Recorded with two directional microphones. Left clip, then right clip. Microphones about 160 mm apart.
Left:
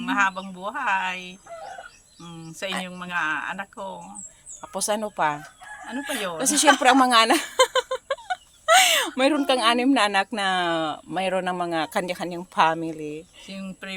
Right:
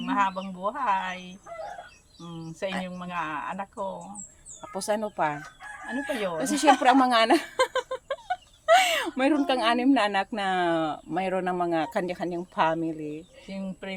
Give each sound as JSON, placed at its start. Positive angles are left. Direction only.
{"t": 0.0, "sound": "speech", "side_deg": 0}
{"t": 13.5, "sound": "speech", "side_deg": -10}